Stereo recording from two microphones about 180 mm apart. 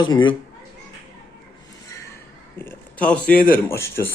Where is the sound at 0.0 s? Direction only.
25° left (ahead or behind).